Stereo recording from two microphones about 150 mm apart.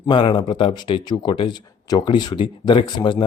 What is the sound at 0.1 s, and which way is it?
Speech, 35° left (ahead or behind).